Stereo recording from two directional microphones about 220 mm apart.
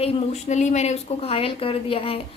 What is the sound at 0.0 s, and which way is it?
A woman's voice, 30° left (ahead or behind).